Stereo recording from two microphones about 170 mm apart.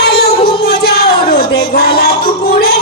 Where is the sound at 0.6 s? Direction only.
65° left (ahead or behind).